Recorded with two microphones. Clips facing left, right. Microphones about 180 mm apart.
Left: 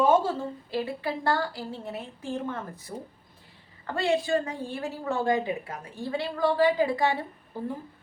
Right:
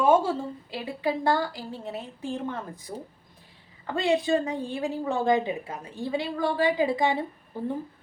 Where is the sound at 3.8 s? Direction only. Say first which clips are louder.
Right 2 dB; 15° right (ahead or behind).